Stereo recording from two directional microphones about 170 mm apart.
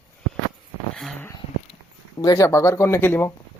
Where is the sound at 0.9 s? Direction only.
5° left (ahead or behind).